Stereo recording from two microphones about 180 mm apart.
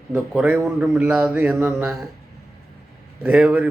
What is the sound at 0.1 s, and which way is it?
Speech, 5° right (ahead or behind).